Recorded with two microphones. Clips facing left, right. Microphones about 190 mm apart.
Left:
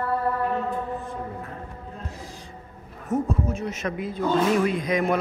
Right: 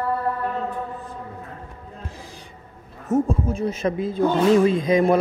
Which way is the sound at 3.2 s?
30° right (ahead or behind).